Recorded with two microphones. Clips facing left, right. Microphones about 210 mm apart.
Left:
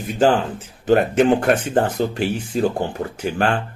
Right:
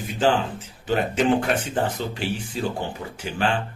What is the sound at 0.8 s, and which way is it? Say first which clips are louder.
Speech: left 6 dB; 50° left (ahead or behind).